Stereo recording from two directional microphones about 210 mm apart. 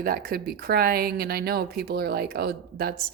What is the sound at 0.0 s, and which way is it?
A woman's voice, 45° right (ahead or behind).